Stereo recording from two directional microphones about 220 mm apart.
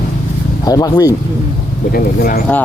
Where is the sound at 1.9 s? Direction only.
40° left (ahead or behind).